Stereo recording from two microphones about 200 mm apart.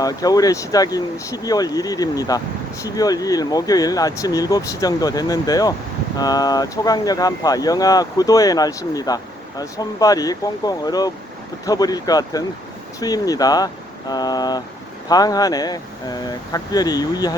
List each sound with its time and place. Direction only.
0.0 s speech: 20° left (ahead or behind)